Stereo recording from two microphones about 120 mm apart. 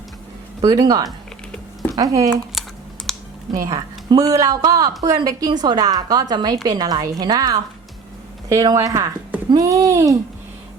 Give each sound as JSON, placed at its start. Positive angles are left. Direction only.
{"t": 0.6, "sound": "a woman's voice", "side_deg": -30}
{"t": 2.6, "sound": "computer keyboard", "side_deg": 0}
{"t": 3.6, "sound": "a woman's voice", "side_deg": -30}